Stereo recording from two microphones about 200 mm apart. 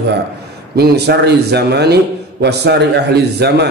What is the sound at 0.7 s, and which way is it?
A man's voice, 55° right (ahead or behind).